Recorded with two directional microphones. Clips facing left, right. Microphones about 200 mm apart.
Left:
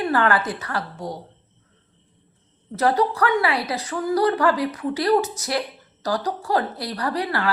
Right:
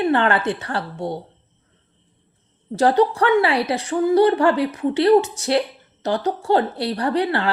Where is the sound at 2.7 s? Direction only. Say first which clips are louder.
Right 4 dB; 30° right (ahead or behind).